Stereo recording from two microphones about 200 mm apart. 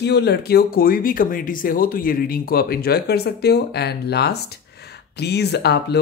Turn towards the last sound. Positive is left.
turn(degrees=55)  # may be behind; listen again after turning